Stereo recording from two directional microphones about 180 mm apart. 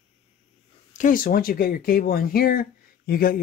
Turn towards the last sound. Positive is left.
turn(degrees=55)  # may be behind; listen again after turning